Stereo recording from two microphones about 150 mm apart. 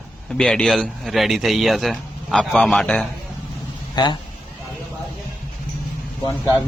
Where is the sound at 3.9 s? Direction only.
30° left (ahead or behind).